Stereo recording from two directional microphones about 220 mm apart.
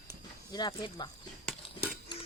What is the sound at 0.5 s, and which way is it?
Speech, 20° left (ahead or behind).